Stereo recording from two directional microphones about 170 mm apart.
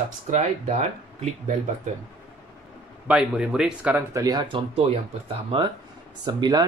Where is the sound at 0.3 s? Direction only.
40° right (ahead or behind).